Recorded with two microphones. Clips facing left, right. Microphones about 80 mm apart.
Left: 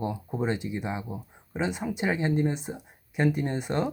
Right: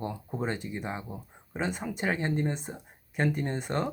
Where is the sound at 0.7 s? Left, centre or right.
Centre.